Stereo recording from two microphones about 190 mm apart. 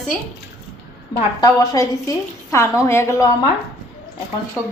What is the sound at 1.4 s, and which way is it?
A woman's voice, 20° left (ahead or behind).